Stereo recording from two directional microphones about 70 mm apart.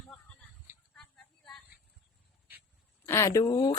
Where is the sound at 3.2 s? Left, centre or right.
Left.